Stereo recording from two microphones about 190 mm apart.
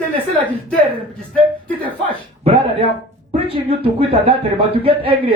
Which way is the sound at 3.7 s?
30° right (ahead or behind).